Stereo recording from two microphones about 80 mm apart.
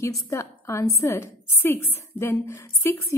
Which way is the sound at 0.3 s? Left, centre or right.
Left.